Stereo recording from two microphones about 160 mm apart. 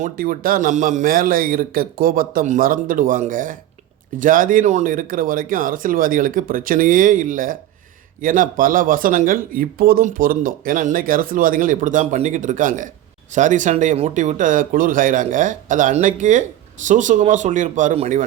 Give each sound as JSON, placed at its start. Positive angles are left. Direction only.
{"t": 0.0, "sound": "speech", "side_deg": -60}